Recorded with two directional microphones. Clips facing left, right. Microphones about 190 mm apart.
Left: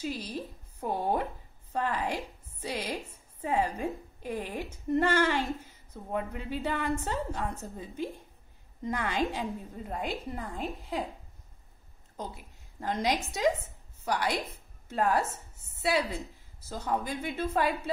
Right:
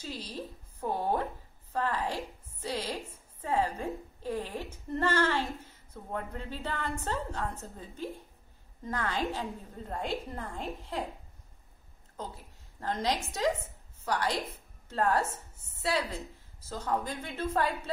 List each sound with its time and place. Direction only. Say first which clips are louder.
0.0 s a woman's voice: left 4 dB; 10° left (ahead or behind)
12.8 s a woman's voice: left 2 dB; 15° left (ahead or behind)
16.6 s a woman's voice: left 1 dB; 10° left (ahead or behind)